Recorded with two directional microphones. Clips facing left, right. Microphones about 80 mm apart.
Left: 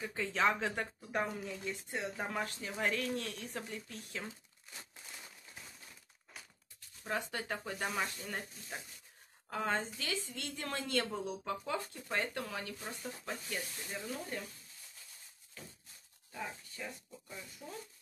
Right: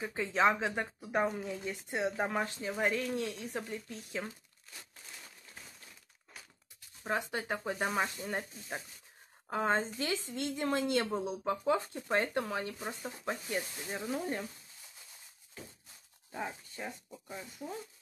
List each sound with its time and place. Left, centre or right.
0.0 s speech: right
7.0 s speech: right
12.7 s speech: centre
16.3 s speech: right